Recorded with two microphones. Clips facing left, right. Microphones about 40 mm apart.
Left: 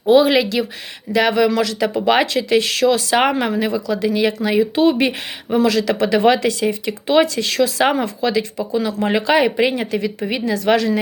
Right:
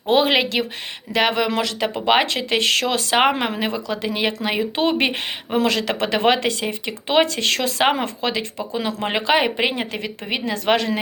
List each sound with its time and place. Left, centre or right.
0.1 s speech: right
7.4 s speech: right